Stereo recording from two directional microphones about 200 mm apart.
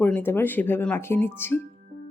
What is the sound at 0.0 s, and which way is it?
Speech, 10° left (ahead or behind).